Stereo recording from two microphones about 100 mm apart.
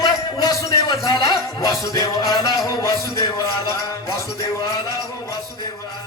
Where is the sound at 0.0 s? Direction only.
40° left (ahead or behind).